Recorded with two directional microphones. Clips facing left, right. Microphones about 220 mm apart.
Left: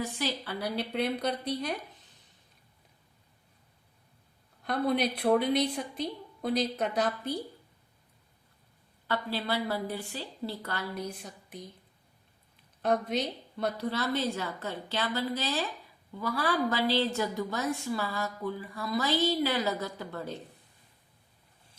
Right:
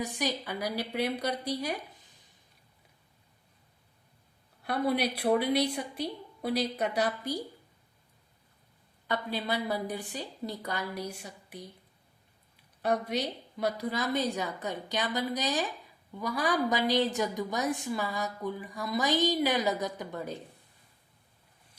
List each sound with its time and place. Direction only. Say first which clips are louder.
0.0 s a woman's voice: right 1 dB; 15° right (ahead or behind)
4.6 s a woman's voice: left 1 dB; 10° right (ahead or behind)
9.0 s a woman's voice: even; 15° right (ahead or behind)
12.8 s a woman's voice: left 1 dB; 10° right (ahead or behind)